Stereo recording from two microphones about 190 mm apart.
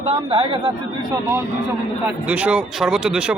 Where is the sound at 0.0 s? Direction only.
30° right (ahead or behind).